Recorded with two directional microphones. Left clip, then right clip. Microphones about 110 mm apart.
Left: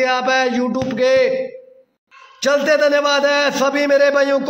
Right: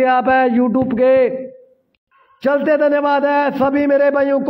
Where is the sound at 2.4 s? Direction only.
35° right (ahead or behind).